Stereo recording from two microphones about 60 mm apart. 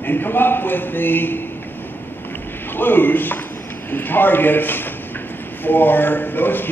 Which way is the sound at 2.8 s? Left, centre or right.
Left.